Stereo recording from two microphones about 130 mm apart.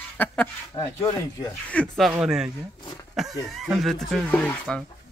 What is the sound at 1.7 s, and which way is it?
Speech, 10° left (ahead or behind).